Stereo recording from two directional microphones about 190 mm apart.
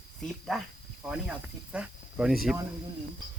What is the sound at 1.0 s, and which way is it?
Speech, 5° right (ahead or behind).